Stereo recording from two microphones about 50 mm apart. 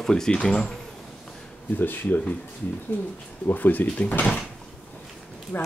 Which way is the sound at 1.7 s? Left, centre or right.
Left.